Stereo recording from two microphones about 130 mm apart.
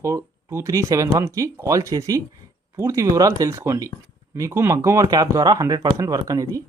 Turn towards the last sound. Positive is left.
turn(degrees=-25)  # may be behind; listen again after turning